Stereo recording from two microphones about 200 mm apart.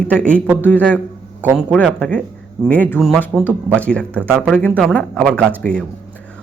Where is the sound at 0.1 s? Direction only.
5° left (ahead or behind).